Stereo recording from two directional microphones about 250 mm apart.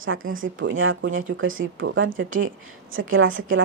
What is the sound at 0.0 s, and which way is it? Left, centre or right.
Speech, right.